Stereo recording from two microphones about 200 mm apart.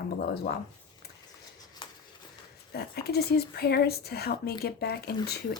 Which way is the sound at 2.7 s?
50° left (ahead or behind).